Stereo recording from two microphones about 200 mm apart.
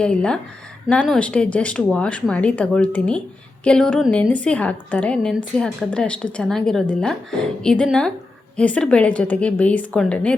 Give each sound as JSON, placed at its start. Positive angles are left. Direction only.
{"t": 0.0, "sound": "a woman's voice", "side_deg": 5}